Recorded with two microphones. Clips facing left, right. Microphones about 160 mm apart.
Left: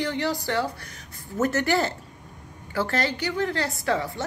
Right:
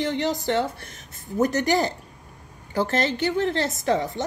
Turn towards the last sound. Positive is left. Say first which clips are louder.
# right 3 dB
turn(degrees=-20)  # may be behind; listen again after turning